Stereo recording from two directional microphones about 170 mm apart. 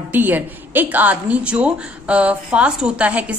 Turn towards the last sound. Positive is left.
turn(degrees=-10)  # may be behind; listen again after turning